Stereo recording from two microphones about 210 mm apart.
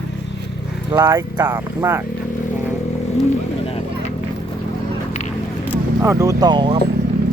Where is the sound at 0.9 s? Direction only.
20° right (ahead or behind).